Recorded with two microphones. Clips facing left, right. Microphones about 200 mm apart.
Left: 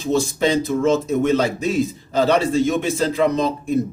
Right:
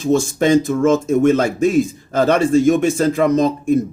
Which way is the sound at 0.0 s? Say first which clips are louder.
Right 3 dB; 45° right (ahead or behind).